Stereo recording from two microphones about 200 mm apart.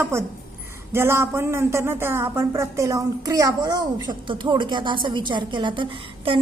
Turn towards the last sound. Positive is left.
turn(degrees=-25)  # may be behind; listen again after turning